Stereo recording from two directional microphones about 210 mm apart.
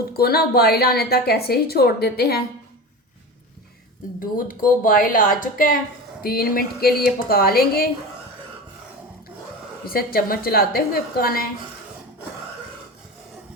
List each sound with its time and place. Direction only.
0.1 s a woman's voice: 45° left (ahead or behind)
4.2 s a woman's voice: 40° left (ahead or behind)
9.8 s a woman's voice: 45° left (ahead or behind)